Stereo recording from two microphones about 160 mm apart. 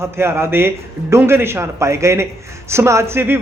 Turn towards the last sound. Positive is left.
turn(degrees=-15)  # may be behind; listen again after turning